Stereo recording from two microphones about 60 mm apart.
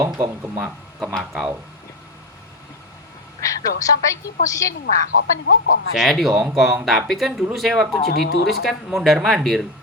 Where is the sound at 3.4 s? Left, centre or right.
Left.